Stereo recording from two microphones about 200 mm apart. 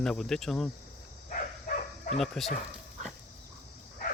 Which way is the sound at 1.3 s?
40° left (ahead or behind).